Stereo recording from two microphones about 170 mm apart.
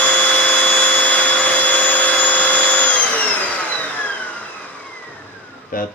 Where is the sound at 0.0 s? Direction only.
10° left (ahead or behind).